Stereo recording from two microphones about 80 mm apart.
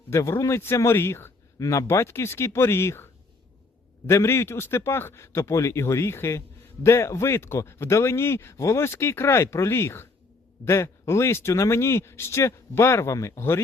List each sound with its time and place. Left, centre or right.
0.1 s a man's voice: left